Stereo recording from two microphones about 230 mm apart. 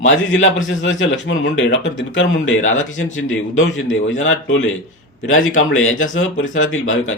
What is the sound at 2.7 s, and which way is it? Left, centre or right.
Speech, left.